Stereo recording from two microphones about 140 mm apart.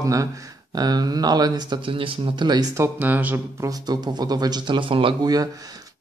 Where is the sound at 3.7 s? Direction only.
30° right (ahead or behind).